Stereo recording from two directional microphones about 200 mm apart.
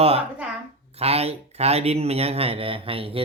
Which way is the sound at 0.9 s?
30° right (ahead or behind).